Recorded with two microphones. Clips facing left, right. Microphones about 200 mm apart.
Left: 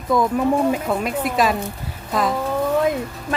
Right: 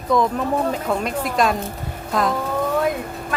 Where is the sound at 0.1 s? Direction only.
5° left (ahead or behind).